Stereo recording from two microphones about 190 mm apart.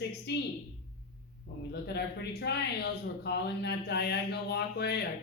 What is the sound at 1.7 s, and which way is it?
Speech, 60° left (ahead or behind).